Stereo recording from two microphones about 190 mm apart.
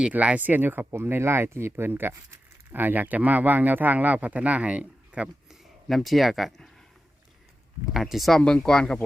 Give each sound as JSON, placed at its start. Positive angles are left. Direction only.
{"t": 0.0, "sound": "speech", "side_deg": -5}
{"t": 7.9, "sound": "speech", "side_deg": 0}